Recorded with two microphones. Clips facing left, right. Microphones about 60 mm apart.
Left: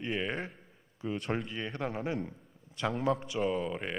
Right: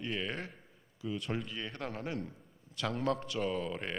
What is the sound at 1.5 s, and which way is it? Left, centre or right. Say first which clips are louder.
Speech: left 4 dB; left.